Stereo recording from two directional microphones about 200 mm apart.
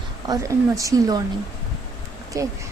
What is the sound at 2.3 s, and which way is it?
Speech, 15° right (ahead or behind).